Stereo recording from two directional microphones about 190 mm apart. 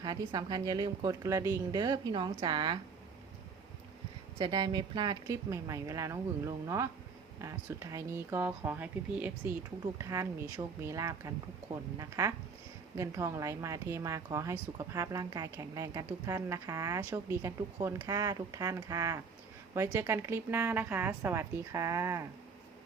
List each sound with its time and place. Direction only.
0.0 s speech: 20° right (ahead or behind)
4.4 s speech: 20° right (ahead or behind)